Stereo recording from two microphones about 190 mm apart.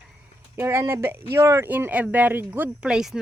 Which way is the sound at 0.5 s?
15° right (ahead or behind).